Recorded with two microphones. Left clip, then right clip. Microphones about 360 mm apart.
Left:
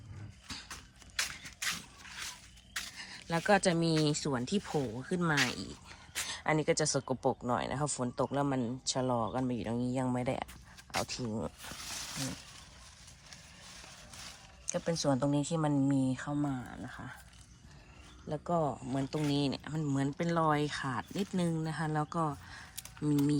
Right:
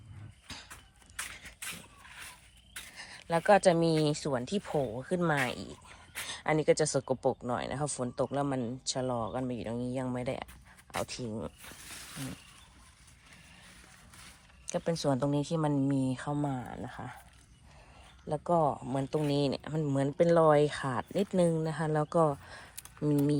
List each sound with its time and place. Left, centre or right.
0.4 s a sound: centre
2.9 s speech: centre
14.7 s speech: centre
16.2 s speech: centre
18.3 s speech: centre
18.6 s speech: centre
19.3 s speech: centre